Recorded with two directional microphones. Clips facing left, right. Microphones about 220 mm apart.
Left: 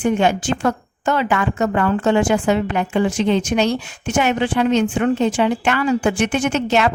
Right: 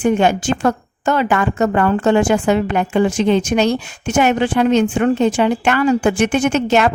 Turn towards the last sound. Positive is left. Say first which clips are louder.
# right 3 dB
turn(degrees=-50)  # may be behind; listen again after turning